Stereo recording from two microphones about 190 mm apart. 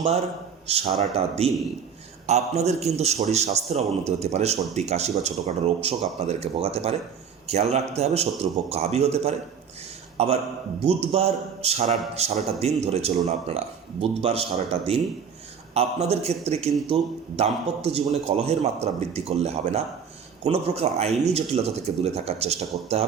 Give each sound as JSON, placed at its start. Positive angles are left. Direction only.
{"t": 0.7, "sound": "a man's voice", "side_deg": -35}